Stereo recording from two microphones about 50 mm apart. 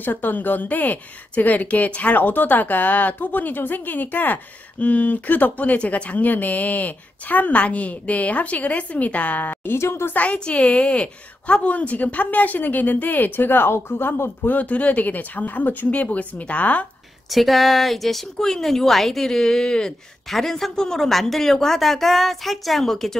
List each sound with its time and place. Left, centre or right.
0.0 s a woman's voice: left
9.7 s a woman's voice: left
10.1 s a woman's voice: left
14.4 s a woman's voice: left
17.3 s speech: centre